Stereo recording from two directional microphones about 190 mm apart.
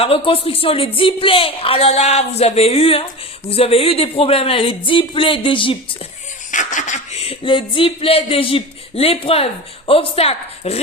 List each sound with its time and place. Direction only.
0.0 s speech: 30° left (ahead or behind)
6.5 s speech: 40° left (ahead or behind)